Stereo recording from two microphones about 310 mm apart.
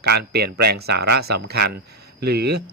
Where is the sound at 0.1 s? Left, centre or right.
Right.